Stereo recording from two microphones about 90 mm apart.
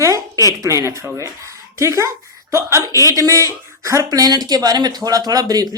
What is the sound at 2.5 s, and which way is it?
Speech, 35° right (ahead or behind).